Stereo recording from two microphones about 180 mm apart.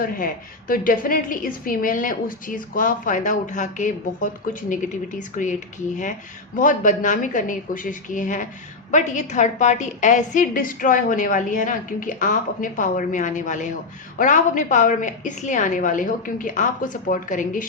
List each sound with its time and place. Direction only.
0.7 s a woman's voice: 50° left (ahead or behind)
6.6 s a woman's voice: 45° left (ahead or behind)